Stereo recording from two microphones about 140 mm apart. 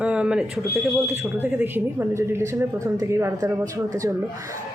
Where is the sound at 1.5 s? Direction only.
15° right (ahead or behind).